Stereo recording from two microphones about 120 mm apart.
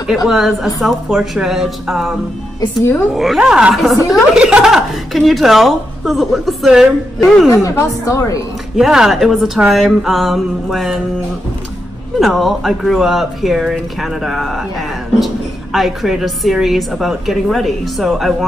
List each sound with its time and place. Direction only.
0.0 s speech: 5° right (ahead or behind)
3.2 s speech: 5° right (ahead or behind)
8.1 s a woman's voice: 30° left (ahead or behind)
8.7 s speech: 5° right (ahead or behind)
12.2 s speech: centre (ahead or behind)